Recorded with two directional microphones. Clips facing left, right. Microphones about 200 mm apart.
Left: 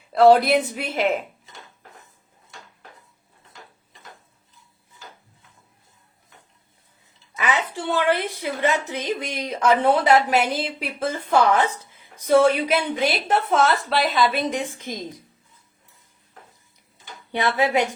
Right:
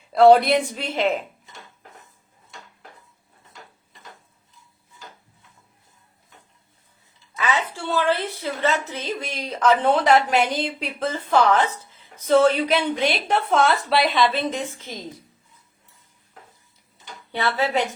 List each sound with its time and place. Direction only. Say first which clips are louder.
0.1 s a woman's voice: right 1 dB; centre (ahead or behind)
7.3 s a woman's voice: even; 15° left (ahead or behind); by 14.3 s centre (ahead or behind)
14.3 s a woman's voice: left 1 dB; 15° left (ahead or behind)
17.3 s a woman's voice: left 2 dB; 15° left (ahead or behind)